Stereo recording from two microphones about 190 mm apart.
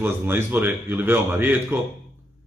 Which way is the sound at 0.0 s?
10° right (ahead or behind).